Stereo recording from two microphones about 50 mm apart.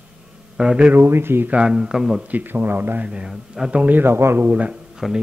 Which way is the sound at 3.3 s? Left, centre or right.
Centre.